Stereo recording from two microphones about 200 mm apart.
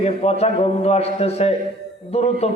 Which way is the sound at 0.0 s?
30° left (ahead or behind).